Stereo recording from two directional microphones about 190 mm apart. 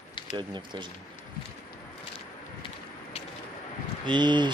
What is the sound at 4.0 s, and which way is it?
Speech, 25° right (ahead or behind).